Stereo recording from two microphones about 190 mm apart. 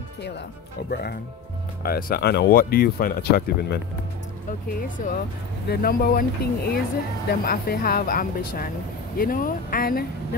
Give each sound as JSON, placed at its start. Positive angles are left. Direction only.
{"t": 0.8, "sound": "speech", "side_deg": 55}
{"t": 4.5, "sound": "speech", "side_deg": 45}